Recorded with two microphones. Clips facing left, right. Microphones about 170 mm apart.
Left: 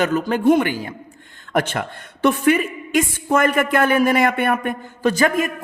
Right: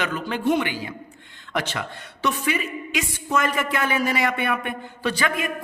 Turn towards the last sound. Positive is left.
turn(degrees=45)  # may be behind; listen again after turning